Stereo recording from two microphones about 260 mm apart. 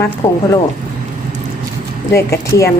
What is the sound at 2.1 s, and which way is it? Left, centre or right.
Speech, centre.